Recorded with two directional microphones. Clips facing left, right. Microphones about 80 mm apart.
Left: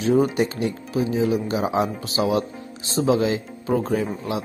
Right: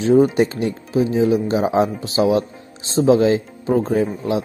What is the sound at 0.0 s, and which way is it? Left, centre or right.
Speech, right.